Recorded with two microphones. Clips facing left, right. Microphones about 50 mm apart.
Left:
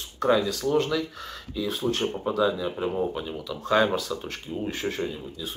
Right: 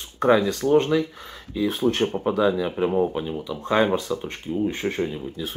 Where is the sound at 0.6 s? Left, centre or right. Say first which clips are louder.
Right 5 dB; right.